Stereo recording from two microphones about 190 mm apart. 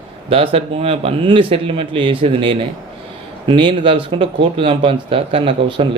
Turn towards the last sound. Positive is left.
turn(degrees=-30)  # may be behind; listen again after turning